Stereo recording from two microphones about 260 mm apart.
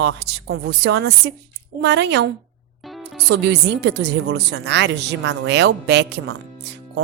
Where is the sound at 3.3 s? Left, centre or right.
Right.